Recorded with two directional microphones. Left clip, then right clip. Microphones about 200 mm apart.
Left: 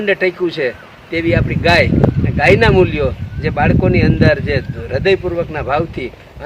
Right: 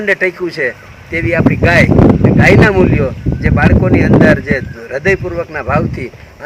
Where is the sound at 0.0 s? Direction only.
15° left (ahead or behind).